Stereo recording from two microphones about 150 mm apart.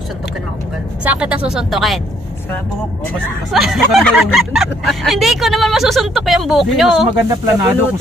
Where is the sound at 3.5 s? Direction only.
Centre (ahead or behind).